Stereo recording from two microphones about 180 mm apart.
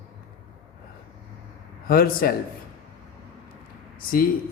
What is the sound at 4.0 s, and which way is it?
Speech, 50° left (ahead or behind).